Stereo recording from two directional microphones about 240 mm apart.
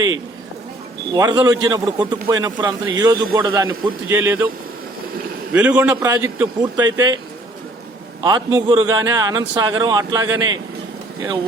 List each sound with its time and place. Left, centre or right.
1.1 s a man's voice: centre
5.5 s a man's voice: centre
8.2 s a man's voice: centre